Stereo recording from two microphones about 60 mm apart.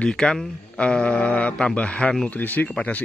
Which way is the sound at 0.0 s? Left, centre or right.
Centre.